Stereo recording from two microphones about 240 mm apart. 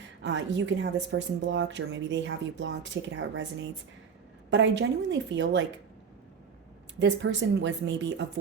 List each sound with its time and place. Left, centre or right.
0.2 s a woman's voice: right
7.0 s a woman's voice: right